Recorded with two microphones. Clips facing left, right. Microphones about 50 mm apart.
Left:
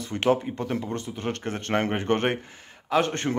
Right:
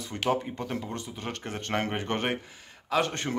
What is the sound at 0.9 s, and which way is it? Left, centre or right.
Speech, left.